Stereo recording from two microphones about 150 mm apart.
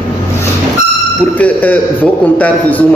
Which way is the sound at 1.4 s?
10° left (ahead or behind).